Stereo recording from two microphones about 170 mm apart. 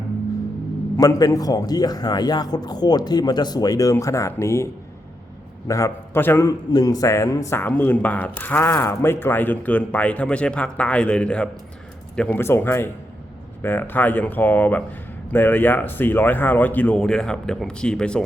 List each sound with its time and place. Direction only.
0.9 s a man's voice: 20° left (ahead or behind); by 18.2 s 5° left (ahead or behind)